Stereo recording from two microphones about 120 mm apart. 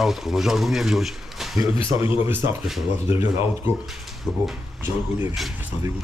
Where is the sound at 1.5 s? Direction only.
15° right (ahead or behind).